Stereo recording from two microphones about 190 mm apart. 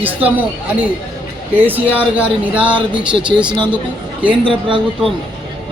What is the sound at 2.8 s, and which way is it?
Speech, 25° right (ahead or behind).